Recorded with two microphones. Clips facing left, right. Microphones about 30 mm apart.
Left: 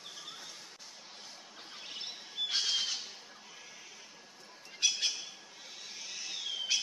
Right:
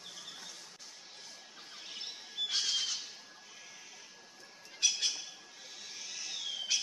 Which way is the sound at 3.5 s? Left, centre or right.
Centre.